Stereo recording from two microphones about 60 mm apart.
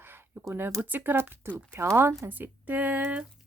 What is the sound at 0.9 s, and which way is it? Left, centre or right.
Speech, right.